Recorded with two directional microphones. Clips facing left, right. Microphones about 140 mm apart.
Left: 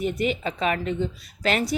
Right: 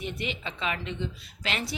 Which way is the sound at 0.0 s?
45° left (ahead or behind).